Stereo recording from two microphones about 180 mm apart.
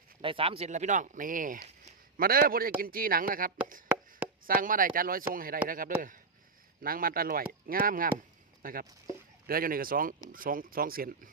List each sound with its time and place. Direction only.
0.2 s a man's voice: 30° right (ahead or behind); by 11.3 s 50° right (ahead or behind)